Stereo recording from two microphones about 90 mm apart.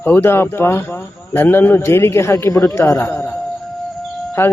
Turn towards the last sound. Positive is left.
turn(degrees=25)  # may be behind; listen again after turning